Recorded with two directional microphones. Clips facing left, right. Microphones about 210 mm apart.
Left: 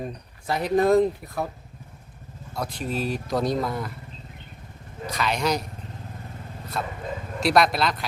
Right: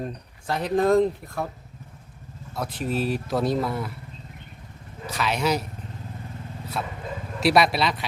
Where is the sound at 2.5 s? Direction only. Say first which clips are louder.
Right 2 dB; 5° right (ahead or behind).